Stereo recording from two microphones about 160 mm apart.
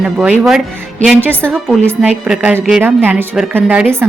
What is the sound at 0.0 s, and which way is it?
Speech, 5° right (ahead or behind).